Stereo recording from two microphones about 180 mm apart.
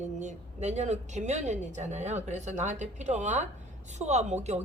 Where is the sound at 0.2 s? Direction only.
40° right (ahead or behind).